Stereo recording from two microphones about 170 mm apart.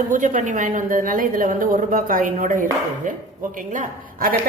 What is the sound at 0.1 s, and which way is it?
A woman's voice, 50° right (ahead or behind).